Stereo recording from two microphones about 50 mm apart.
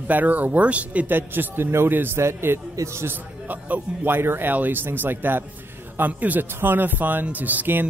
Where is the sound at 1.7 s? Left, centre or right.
Right.